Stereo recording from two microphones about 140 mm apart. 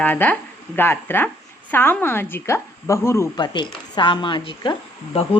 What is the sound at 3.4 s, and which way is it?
A woman's voice, 35° left (ahead or behind).